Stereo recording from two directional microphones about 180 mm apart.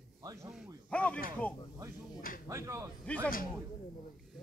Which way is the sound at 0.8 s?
5° left (ahead or behind).